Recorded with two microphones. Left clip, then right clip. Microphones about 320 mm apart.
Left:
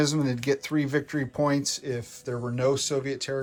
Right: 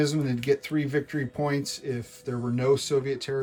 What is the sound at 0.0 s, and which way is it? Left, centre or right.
Speech, centre.